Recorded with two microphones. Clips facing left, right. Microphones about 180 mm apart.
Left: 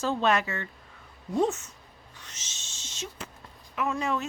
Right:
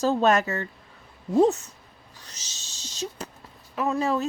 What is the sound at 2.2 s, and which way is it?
Owl, 35° right (ahead or behind).